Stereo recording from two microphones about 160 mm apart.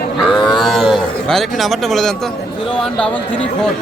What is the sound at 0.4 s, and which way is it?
Cattle, centre (ahead or behind).